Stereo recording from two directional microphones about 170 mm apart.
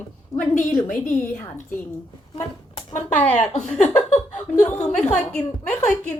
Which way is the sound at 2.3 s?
30° left (ahead or behind).